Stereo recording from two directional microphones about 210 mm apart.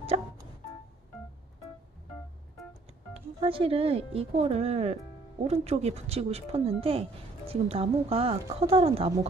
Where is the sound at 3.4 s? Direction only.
25° right (ahead or behind).